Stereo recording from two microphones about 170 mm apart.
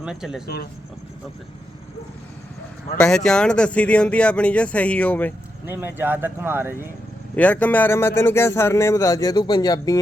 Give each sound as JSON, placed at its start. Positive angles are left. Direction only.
{"t": 0.0, "sound": "speech", "side_deg": -5}
{"t": 0.4, "sound": "speech", "side_deg": 65}
{"t": 3.0, "sound": "speech", "side_deg": 5}
{"t": 5.6, "sound": "speech", "side_deg": -10}
{"t": 7.3, "sound": "speech", "side_deg": 10}